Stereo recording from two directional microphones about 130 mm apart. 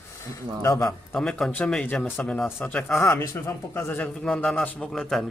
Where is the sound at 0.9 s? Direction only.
5° left (ahead or behind).